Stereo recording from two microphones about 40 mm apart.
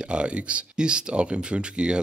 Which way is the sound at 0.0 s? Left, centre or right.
Right.